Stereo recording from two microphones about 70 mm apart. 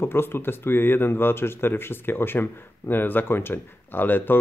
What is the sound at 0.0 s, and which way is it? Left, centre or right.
Speech, left.